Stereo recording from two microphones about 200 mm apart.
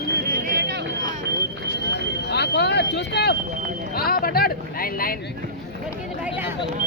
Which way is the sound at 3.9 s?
50° left (ahead or behind).